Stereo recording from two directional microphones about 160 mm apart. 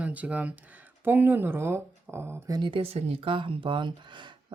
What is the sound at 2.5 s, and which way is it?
Speech, 30° right (ahead or behind).